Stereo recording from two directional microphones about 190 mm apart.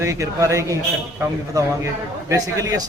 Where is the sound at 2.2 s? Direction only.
15° right (ahead or behind).